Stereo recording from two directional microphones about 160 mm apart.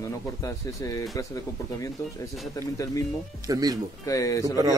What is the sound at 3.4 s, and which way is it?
Speech, 25° right (ahead or behind).